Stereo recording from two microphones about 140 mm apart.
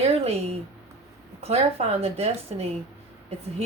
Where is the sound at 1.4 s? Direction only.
50° right (ahead or behind).